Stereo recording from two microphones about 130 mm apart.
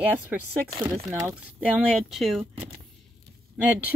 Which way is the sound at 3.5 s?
10° right (ahead or behind).